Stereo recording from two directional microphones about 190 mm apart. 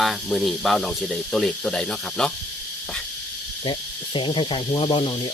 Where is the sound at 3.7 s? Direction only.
25° left (ahead or behind).